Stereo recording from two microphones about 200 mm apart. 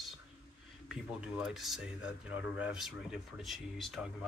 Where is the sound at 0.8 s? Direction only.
5° right (ahead or behind).